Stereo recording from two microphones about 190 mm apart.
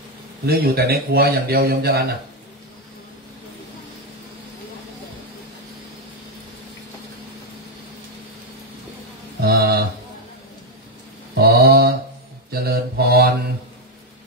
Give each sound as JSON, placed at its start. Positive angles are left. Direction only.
{"t": 0.5, "sound": "a man's voice", "side_deg": -55}
{"t": 9.4, "sound": "speech", "side_deg": -55}
{"t": 11.4, "sound": "a sound", "side_deg": -55}
{"t": 12.4, "sound": "mantra", "side_deg": -55}